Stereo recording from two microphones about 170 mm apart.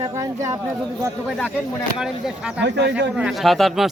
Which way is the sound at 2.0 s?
5° right (ahead or behind).